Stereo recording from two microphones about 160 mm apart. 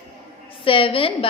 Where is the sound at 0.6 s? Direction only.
35° left (ahead or behind).